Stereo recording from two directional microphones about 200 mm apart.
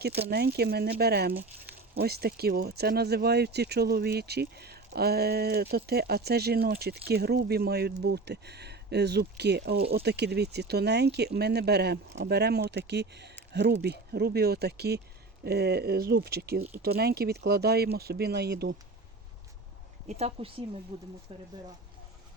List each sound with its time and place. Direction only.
0.3 s speech: 55° right (ahead or behind)
20.1 s speech: 30° right (ahead or behind)